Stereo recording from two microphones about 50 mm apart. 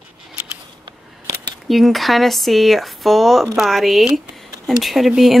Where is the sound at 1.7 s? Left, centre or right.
Centre.